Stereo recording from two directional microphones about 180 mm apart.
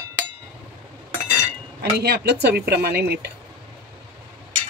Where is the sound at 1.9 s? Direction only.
60° right (ahead or behind).